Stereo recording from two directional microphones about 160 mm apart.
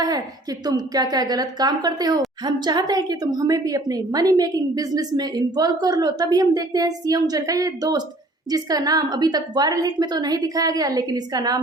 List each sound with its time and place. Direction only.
0.6 s a woman's voice: 25° right (ahead or behind)